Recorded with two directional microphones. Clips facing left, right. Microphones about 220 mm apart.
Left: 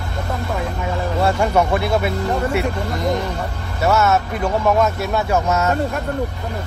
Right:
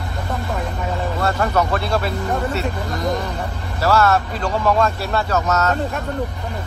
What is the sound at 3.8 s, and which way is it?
Speech, 25° left (ahead or behind).